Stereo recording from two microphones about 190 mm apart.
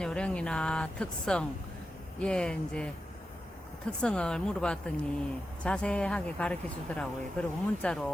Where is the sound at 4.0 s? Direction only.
5° left (ahead or behind).